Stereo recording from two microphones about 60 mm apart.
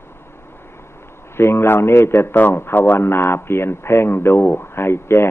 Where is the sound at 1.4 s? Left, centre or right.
Left.